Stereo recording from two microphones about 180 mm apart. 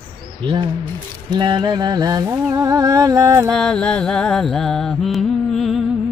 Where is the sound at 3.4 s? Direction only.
5° left (ahead or behind).